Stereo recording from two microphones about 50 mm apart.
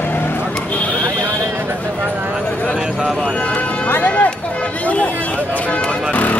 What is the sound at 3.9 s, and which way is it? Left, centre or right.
Speech, left.